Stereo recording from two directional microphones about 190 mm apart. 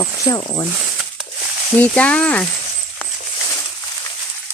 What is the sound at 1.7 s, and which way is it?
Speech, 5° left (ahead or behind).